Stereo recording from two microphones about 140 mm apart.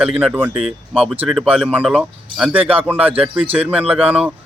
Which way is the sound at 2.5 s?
10° right (ahead or behind).